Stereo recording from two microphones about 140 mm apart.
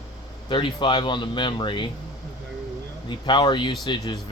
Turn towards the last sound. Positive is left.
turn(degrees=30)  # may be behind; listen again after turning